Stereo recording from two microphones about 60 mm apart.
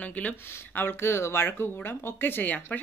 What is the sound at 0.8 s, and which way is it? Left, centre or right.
A woman's voice, left.